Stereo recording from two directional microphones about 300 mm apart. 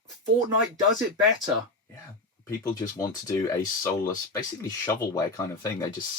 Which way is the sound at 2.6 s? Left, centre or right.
Centre.